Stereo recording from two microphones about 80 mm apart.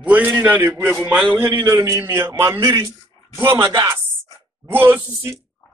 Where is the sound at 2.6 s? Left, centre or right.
Right.